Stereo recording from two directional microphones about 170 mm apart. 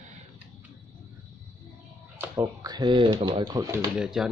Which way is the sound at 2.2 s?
15° right (ahead or behind).